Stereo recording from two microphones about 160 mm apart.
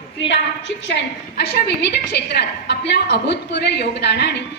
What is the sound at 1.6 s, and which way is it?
A woman's voice, 90° left.